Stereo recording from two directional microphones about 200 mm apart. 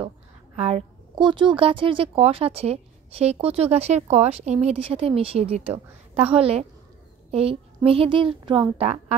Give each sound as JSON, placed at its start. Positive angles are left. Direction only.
{"t": 0.6, "sound": "a woman's voice", "side_deg": -30}